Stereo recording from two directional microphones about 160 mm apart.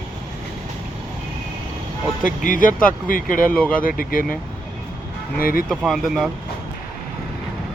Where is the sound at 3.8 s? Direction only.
65° left (ahead or behind).